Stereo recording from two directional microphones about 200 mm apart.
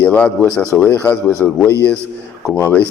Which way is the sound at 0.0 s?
5° left (ahead or behind).